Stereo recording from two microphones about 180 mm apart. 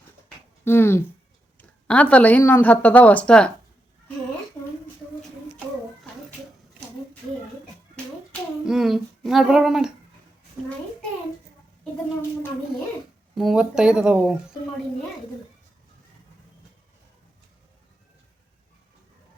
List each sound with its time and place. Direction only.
0.6 s a sound: 10° left (ahead or behind)
1.5 s speech: 5° left (ahead or behind)
8.6 s humming: centre (ahead or behind)
13.3 s humming: centre (ahead or behind)